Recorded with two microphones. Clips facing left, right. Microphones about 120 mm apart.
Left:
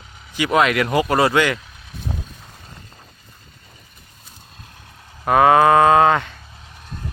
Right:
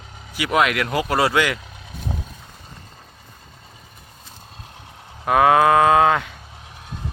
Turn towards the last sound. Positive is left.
turn(degrees=-10)  # may be behind; listen again after turning